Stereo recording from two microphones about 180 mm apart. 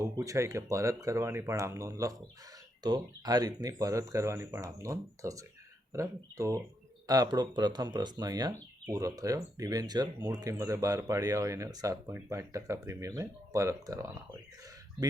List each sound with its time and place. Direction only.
0.0 s speech: 15° right (ahead or behind)